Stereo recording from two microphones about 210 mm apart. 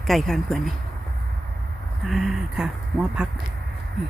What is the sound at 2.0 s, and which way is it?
Speech, centre (ahead or behind).